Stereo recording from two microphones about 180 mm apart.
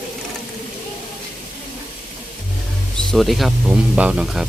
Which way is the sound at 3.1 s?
Centre (ahead or behind).